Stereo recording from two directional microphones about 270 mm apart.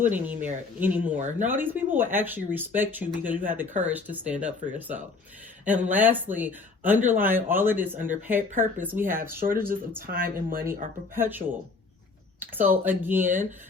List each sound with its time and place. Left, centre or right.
0.0 s speech: centre
10.1 s speech: right
11.1 s speech: centre